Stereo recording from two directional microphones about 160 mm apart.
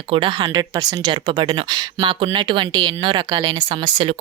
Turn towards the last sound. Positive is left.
turn(degrees=-30)  # may be behind; listen again after turning